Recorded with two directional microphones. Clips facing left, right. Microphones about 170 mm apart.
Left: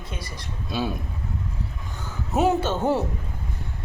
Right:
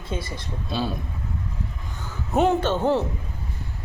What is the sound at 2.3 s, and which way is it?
Speech, 5° left (ahead or behind).